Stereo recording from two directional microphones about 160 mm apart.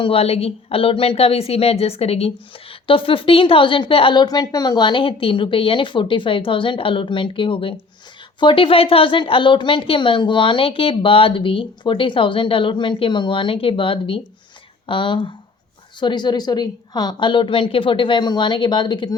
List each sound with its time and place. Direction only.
0.0 s a woman's voice: 40° left (ahead or behind)